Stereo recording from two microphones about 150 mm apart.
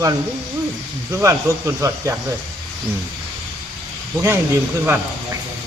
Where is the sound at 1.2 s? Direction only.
20° right (ahead or behind).